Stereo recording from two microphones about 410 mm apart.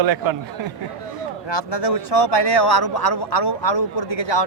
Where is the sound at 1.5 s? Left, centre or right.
Left.